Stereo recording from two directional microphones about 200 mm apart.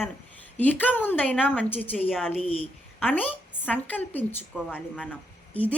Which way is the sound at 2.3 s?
30° right (ahead or behind).